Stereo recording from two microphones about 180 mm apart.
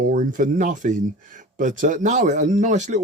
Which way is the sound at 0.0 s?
50° right (ahead or behind).